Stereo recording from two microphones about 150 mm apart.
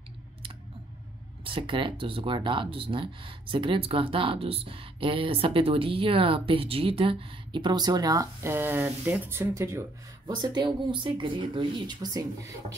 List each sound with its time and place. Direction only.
1.4 s speech: 35° right (ahead or behind)